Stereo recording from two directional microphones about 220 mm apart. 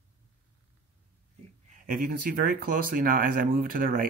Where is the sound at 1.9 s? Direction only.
40° right (ahead or behind).